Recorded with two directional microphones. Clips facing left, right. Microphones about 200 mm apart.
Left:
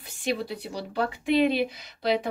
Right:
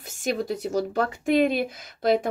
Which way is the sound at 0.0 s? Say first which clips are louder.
Right 2 dB; 45° right (ahead or behind).